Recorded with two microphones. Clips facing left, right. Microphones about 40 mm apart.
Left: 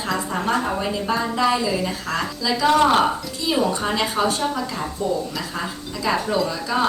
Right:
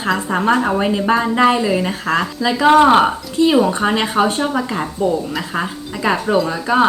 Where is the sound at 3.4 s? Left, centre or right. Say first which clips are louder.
Right 9 dB; right.